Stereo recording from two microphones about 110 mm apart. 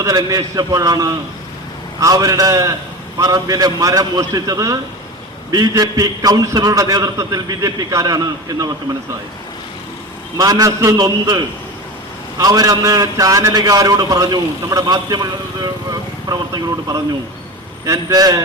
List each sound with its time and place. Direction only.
0.0 s a man's voice: 35° right (ahead or behind)
10.3 s a man's voice: 35° right (ahead or behind)